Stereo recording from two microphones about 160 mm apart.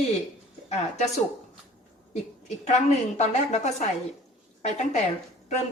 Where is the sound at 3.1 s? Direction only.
45° left (ahead or behind).